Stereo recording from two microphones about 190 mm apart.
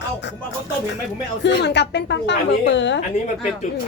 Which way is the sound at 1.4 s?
65° left (ahead or behind).